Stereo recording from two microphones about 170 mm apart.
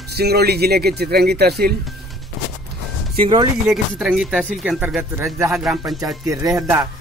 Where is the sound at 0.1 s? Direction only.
65° right (ahead or behind).